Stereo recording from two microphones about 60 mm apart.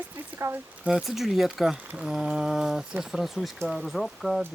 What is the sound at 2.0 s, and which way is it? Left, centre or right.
Mantra, centre.